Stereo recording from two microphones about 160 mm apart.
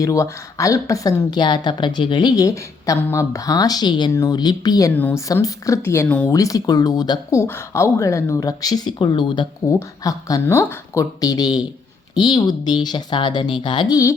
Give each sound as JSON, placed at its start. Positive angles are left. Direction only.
{"t": 0.0, "sound": "a woman's voice", "side_deg": 20}
{"t": 4.9, "sound": "speech", "side_deg": 10}
{"t": 5.3, "sound": "speech", "side_deg": 20}
{"t": 6.3, "sound": "a woman's voice", "side_deg": 20}